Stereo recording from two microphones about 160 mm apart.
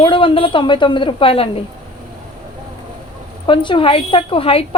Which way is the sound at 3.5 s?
30° left (ahead or behind).